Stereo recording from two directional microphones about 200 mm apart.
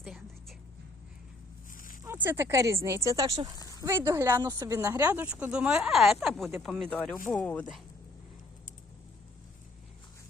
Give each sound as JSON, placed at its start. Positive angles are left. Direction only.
{"t": 0.0, "sound": "music", "side_deg": 0}
{"t": 1.7, "sound": "a sound", "side_deg": 45}
{"t": 2.0, "sound": "speech", "side_deg": -10}